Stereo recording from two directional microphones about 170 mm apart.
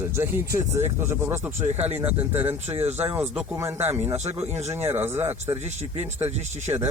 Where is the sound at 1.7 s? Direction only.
40° right (ahead or behind).